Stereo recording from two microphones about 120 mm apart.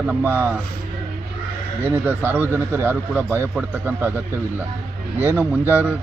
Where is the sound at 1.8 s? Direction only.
15° right (ahead or behind).